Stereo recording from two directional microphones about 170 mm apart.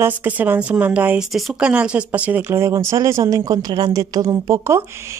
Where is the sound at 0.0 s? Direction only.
10° right (ahead or behind).